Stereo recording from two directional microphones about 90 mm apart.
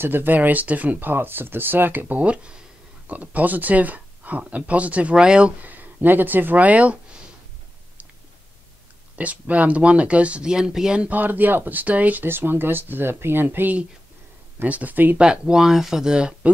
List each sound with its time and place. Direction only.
0.0 s speech: 25° right (ahead or behind)
9.1 s speech: 15° right (ahead or behind)